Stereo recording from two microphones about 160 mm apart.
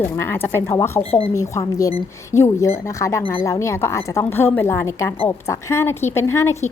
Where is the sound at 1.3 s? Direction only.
20° left (ahead or behind).